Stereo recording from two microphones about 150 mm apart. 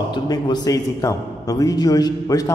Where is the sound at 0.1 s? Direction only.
25° left (ahead or behind).